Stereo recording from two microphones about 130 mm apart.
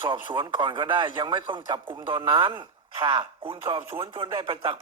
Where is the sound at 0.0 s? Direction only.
40° right (ahead or behind).